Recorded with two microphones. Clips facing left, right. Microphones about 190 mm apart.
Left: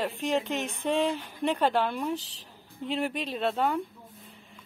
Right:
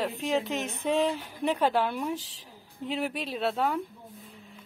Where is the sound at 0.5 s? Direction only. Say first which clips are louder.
Even; 40° right (ahead or behind).